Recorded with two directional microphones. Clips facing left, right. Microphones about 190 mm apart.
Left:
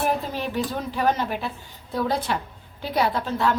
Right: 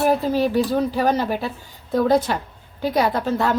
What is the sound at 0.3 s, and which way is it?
A woman's voice, 35° right (ahead or behind).